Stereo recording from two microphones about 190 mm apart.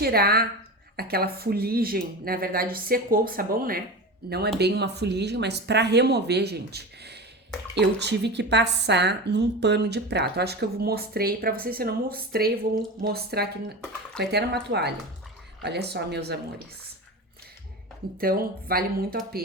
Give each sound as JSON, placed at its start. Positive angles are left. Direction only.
{"t": 0.0, "sound": "a woman's voice", "side_deg": -55}
{"t": 18.2, "sound": "speech", "side_deg": -50}